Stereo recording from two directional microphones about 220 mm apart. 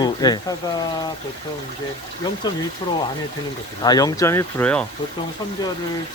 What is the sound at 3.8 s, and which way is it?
Speech, 15° left (ahead or behind).